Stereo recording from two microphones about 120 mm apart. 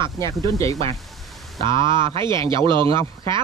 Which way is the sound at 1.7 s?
40° right (ahead or behind).